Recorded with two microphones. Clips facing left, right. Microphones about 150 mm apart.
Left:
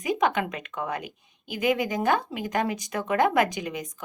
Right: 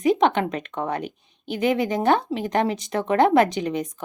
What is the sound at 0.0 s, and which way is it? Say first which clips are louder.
Speech: right 6 dB; 30° right (ahead or behind).